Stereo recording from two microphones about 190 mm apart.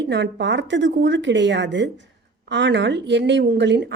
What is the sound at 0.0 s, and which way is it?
A woman's voice, 65° right (ahead or behind).